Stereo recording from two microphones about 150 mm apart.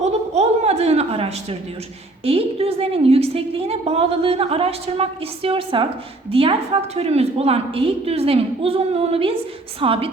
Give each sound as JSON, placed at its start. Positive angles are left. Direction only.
{"t": 0.0, "sound": "chuckle", "side_deg": -45}
{"t": 2.2, "sound": "a woman's voice", "side_deg": -40}